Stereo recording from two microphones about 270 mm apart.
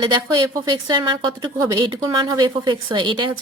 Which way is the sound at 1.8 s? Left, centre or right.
Centre.